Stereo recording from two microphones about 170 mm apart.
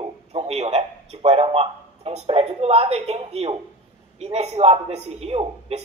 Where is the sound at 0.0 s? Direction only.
35° right (ahead or behind).